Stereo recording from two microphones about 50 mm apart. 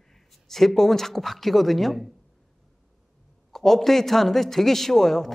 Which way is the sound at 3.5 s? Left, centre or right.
Centre.